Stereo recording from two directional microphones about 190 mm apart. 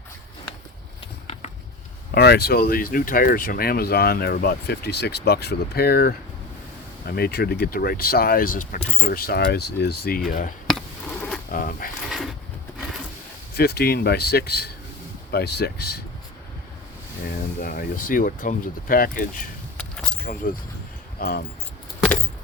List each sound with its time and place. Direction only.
2.1 s speech: 60° left (ahead or behind)
10.7 s insect: 5° left (ahead or behind)
11.5 s speech: 45° left (ahead or behind)
13.6 s speech: 55° left (ahead or behind)
17.6 s speech: 45° left (ahead or behind)
19.7 s keys jangling: 5° left (ahead or behind)
21.2 s speech: 55° left (ahead or behind)